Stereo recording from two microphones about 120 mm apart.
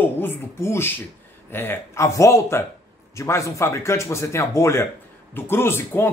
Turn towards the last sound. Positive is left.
turn(degrees=20)  # may be behind; listen again after turning